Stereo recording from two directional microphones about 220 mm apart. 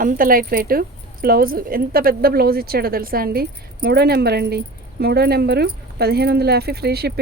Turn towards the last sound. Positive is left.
turn(degrees=-45)  # may be behind; listen again after turning